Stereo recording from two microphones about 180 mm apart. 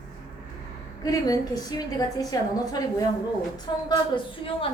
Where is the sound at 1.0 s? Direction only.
20° left (ahead or behind).